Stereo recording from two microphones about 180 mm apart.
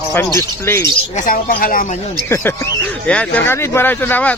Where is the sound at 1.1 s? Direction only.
45° left (ahead or behind).